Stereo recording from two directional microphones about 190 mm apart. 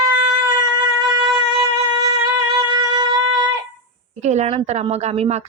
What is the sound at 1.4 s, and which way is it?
Music, 20° right (ahead or behind).